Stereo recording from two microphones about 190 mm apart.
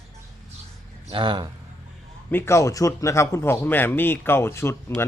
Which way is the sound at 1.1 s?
25° right (ahead or behind).